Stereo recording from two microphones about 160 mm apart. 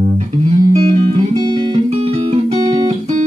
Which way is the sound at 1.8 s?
40° right (ahead or behind).